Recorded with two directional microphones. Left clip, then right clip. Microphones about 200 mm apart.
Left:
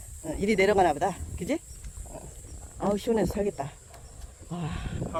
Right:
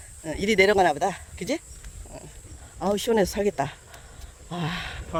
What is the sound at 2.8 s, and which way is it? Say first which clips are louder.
Speech: right 4 dB; 30° right (ahead or behind).